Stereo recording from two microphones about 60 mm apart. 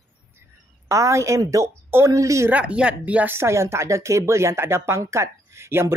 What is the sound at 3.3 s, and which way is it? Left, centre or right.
Speech, right.